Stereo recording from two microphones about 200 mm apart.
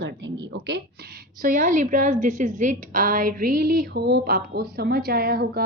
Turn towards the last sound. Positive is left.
turn(degrees=-50)  # may be behind; listen again after turning